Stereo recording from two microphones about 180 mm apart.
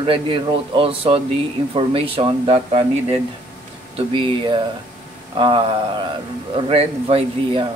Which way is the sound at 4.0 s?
25° right (ahead or behind).